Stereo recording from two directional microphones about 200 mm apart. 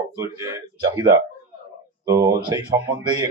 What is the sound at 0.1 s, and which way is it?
Speech, 15° right (ahead or behind).